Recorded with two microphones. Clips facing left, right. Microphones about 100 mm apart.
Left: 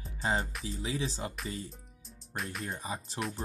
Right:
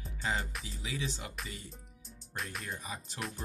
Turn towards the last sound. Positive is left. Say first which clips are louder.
# left 5 dB
turn(degrees=0)  # may be behind; listen again after turning